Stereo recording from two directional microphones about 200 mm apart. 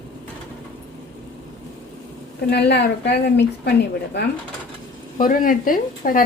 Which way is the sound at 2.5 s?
55° left (ahead or behind).